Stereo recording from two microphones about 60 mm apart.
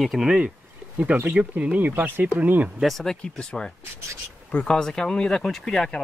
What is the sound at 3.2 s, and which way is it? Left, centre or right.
Speech, centre.